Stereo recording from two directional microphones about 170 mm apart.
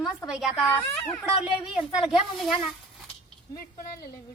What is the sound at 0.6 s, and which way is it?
A child's voice, 10° left (ahead or behind).